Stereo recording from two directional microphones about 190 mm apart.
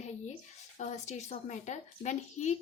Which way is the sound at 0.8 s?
40° left (ahead or behind).